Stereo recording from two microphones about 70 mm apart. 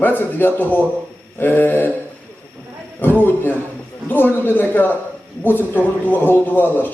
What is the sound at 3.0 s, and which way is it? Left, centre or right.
Speech, left.